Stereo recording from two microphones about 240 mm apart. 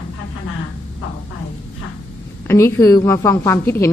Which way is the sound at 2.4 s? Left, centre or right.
Centre.